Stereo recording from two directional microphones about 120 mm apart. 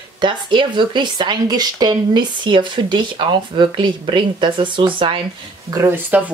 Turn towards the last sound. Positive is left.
turn(degrees=-10)  # may be behind; listen again after turning